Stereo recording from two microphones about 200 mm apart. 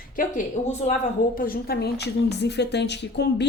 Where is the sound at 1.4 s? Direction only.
50° left (ahead or behind).